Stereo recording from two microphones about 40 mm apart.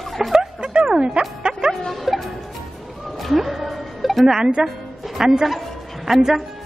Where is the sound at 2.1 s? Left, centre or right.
Centre.